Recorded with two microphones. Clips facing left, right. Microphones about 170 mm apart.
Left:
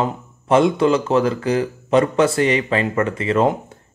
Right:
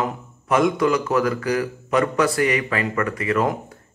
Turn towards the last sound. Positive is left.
turn(degrees=25)  # may be behind; listen again after turning